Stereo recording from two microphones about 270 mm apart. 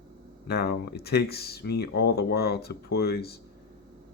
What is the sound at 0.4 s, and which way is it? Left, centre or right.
Speech, left.